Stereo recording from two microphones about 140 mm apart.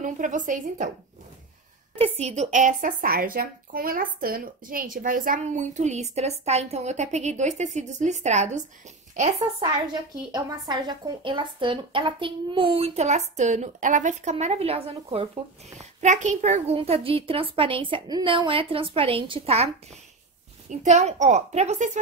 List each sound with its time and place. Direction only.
0.0 s speech: 65° right (ahead or behind)
2.0 s a woman's voice: 45° right (ahead or behind)
10.3 s speech: 30° right (ahead or behind)
15.8 s speech: 60° right (ahead or behind)
16.7 s a woman's voice: 45° right (ahead or behind)
20.7 s speech: 55° right (ahead or behind)